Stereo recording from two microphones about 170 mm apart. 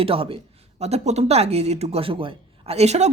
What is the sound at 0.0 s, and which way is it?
Speech, 35° right (ahead or behind).